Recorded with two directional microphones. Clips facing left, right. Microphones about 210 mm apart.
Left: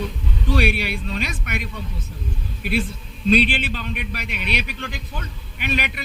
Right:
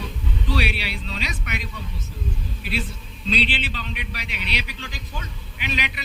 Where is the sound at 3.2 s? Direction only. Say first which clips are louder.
Left 7 dB; 50° left (ahead or behind).